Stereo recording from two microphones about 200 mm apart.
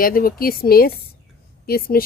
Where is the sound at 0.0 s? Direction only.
45° left (ahead or behind).